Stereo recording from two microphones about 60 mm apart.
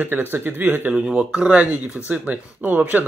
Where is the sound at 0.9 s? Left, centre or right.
Centre.